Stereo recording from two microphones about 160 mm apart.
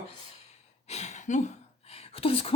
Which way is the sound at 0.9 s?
45° left (ahead or behind).